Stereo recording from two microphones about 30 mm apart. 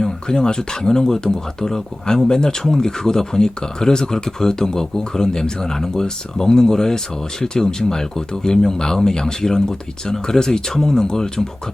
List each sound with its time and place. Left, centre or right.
0.0 s speech: left